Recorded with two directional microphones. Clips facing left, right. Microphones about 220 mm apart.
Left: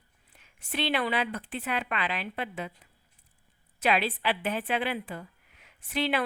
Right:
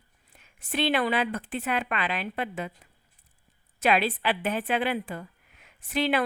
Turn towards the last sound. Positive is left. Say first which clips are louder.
# right 3 dB
turn(degrees=-45)  # may be behind; listen again after turning